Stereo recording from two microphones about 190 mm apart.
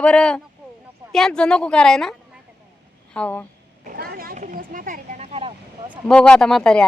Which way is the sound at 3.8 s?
50° right (ahead or behind).